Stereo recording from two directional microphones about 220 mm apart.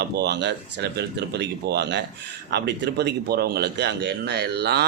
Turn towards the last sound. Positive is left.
turn(degrees=-50)  # may be behind; listen again after turning